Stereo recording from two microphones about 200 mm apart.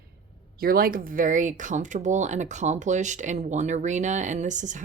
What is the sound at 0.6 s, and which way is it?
Speech, 45° right (ahead or behind).